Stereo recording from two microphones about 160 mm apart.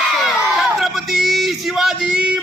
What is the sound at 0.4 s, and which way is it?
Male singing, centre (ahead or behind).